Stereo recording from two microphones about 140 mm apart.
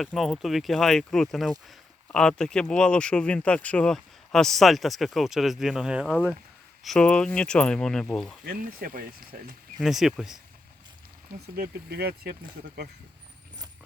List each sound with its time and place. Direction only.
0.0 s speech: centre (ahead or behind)
8.4 s speech: 80° right
9.8 s speech: centre (ahead or behind)
11.3 s speech: 90° right